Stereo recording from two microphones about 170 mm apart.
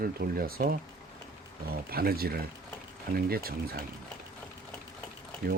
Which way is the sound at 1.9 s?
65° right (ahead or behind).